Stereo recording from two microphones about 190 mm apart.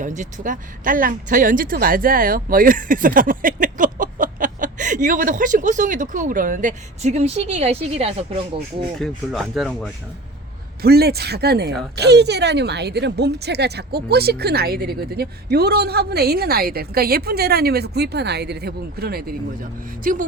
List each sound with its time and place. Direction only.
0.0 s speech: 40° right (ahead or behind)
9.0 s speech: centre (ahead or behind)
10.8 s speech: 55° right (ahead or behind)